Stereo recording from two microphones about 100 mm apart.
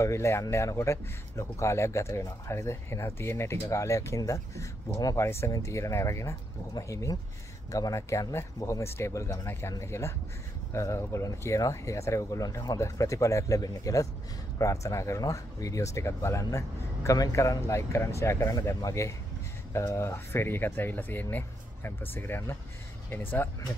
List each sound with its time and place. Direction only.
0.0 s speech: 30° left (ahead or behind)